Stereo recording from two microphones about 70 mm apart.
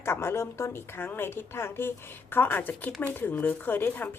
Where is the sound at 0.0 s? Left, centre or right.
Left.